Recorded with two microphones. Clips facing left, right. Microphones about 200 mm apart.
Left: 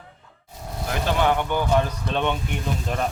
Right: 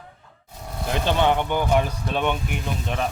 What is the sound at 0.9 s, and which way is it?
Speech, 20° right (ahead or behind).